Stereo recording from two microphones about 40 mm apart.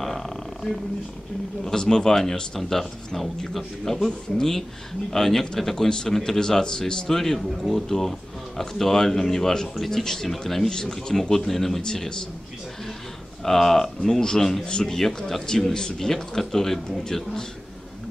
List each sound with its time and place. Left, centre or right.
0.0 s a sound: centre
1.6 s speech: centre
7.4 s speech: centre
10.7 s speech: centre
11.9 s speech: centre
13.4 s speech: centre
14.2 s speech: centre
15.0 s speech: centre